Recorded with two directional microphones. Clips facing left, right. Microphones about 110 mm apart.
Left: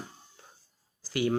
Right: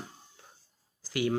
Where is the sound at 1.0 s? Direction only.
30° left (ahead or behind).